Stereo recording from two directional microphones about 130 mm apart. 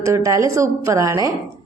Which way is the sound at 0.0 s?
25° right (ahead or behind).